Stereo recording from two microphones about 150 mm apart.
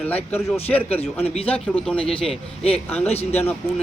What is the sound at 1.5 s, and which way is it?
Speech, 5° left (ahead or behind).